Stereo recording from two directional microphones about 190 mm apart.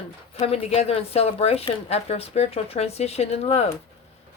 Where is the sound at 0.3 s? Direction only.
30° left (ahead or behind).